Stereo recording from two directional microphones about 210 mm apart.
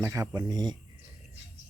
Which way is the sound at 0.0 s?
15° right (ahead or behind).